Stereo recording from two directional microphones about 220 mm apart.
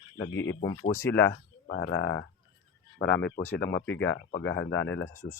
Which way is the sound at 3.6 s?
50° left (ahead or behind).